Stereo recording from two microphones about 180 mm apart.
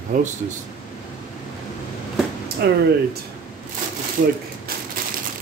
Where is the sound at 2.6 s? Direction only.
60° right (ahead or behind).